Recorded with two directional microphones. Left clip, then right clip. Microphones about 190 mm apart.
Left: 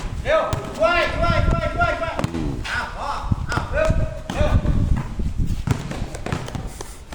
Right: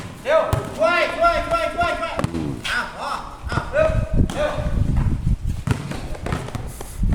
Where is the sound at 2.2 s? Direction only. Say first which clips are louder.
Right 1 dB; 15° right (ahead or behind).